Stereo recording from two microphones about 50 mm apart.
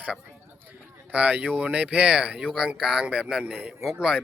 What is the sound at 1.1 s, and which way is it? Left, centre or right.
Speech, right.